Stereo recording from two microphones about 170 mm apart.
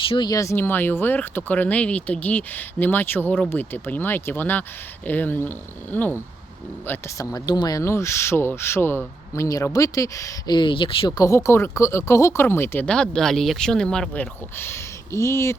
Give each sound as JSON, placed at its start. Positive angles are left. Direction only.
{"t": 0.1, "sound": "speech", "side_deg": 25}
{"t": 11.2, "sound": "speech", "side_deg": 15}